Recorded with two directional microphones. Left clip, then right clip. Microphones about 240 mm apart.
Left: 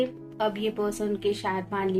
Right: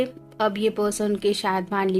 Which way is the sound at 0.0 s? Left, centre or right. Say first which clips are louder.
Right 3 dB; right.